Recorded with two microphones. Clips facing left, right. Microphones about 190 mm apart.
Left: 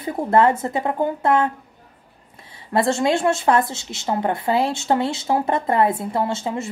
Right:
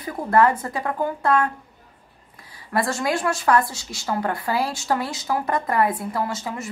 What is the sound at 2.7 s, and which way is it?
Speech, 25° left (ahead or behind).